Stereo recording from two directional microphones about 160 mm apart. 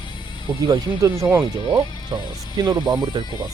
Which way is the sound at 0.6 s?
25° right (ahead or behind).